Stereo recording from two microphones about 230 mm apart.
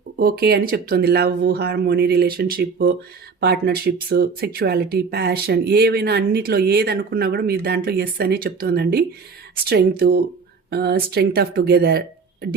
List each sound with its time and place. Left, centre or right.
0.2 s speech: right